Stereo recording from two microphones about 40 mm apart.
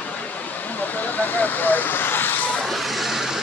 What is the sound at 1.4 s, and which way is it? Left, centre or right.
Speech, left.